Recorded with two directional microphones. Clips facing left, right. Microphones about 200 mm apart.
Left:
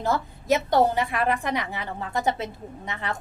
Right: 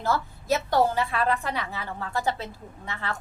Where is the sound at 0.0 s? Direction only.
20° left (ahead or behind).